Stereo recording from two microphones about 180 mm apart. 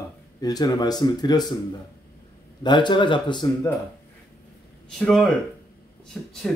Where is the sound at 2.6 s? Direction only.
25° left (ahead or behind).